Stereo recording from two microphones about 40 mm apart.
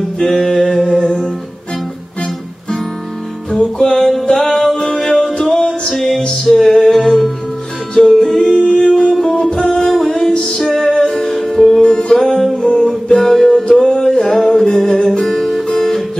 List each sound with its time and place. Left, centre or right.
0.2 s a sound: centre
1.0 s music: centre
3.5 s music: centre
4.7 s music: centre
7.1 s music: centre
11.8 s music: centre
12.2 s music: centre